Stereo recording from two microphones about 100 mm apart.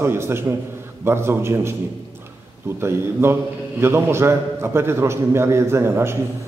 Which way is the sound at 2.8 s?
25° right (ahead or behind).